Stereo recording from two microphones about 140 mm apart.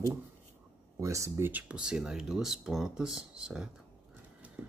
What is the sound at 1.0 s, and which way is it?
Speech, 20° right (ahead or behind).